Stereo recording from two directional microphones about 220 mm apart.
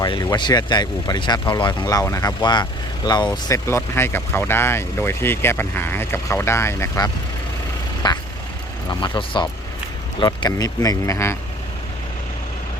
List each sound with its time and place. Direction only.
0.0 s speech: 20° left (ahead or behind)
8.0 s vehicle: 20° left (ahead or behind)
8.9 s speech: 20° left (ahead or behind)